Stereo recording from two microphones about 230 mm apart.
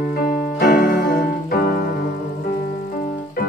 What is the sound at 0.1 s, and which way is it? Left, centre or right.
Keyboard, left.